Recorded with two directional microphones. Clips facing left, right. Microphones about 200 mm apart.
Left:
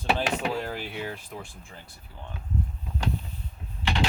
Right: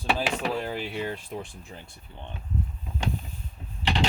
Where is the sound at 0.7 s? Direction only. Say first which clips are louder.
Right 3 dB; 5° left (ahead or behind).